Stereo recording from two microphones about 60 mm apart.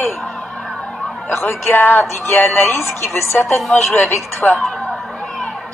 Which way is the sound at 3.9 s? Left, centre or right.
Left.